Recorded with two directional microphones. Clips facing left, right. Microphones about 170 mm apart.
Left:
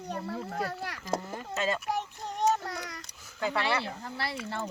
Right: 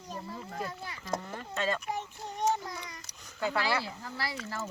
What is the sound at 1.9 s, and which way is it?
Child singing, 70° left (ahead or behind).